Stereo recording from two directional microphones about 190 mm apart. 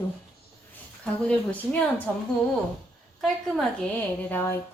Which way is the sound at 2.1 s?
10° left (ahead or behind).